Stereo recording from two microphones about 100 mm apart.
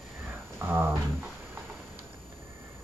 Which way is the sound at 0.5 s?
20° right (ahead or behind).